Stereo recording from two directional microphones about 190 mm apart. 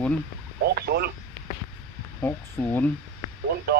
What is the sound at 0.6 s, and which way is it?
Speech, 55° right (ahead or behind).